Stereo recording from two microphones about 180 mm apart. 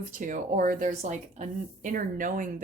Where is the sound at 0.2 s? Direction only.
50° right (ahead or behind).